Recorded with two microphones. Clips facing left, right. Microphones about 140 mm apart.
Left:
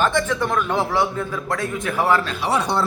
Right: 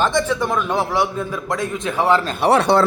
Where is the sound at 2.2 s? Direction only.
55° right (ahead or behind).